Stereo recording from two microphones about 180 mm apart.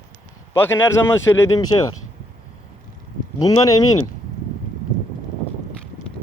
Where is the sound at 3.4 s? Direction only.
20° left (ahead or behind).